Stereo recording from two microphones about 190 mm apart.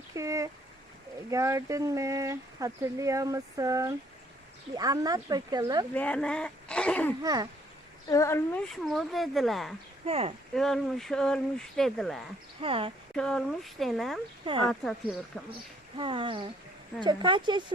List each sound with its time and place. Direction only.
0.1 s a sound: 15° right (ahead or behind)
1.3 s speech: 15° right (ahead or behind)
5.9 s speech: 5° left (ahead or behind)
7.2 s speech: 20° right (ahead or behind)
8.0 s speech: 15° left (ahead or behind)
8.7 s speech: centre (ahead or behind)
10.1 s speech: 30° right (ahead or behind)
10.5 s speech: centre (ahead or behind)
12.6 s speech: 30° right (ahead or behind)
13.1 s speech: 5° left (ahead or behind)
16.0 s speech: 25° right (ahead or behind)